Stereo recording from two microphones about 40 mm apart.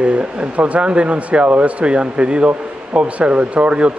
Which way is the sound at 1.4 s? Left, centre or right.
Right.